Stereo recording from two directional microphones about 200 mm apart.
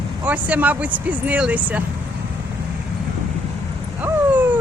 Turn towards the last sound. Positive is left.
turn(degrees=-10)  # may be behind; listen again after turning